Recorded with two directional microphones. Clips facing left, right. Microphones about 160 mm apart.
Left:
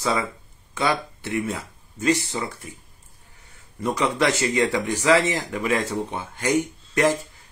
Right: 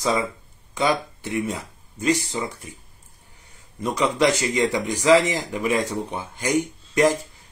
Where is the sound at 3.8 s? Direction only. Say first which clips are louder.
Right 2 dB; 15° right (ahead or behind).